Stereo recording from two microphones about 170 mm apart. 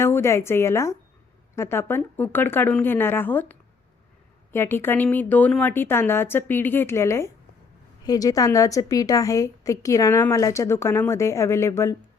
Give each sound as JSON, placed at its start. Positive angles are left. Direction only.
{"t": 0.0, "sound": "a woman's voice", "side_deg": 15}